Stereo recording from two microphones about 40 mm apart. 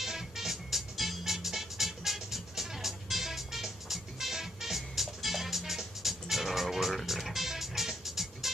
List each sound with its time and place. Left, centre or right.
0.0 s music: centre